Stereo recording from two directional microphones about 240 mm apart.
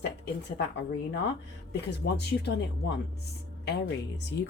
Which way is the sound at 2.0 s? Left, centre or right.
Left.